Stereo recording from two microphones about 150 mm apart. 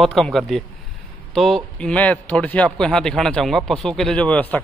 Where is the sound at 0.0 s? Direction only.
Centre (ahead or behind).